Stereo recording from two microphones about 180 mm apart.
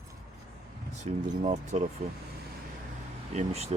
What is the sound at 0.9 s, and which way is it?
Speech, 40° right (ahead or behind).